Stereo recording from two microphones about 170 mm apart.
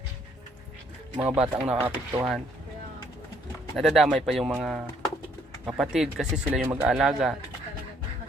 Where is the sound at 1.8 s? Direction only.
35° right (ahead or behind).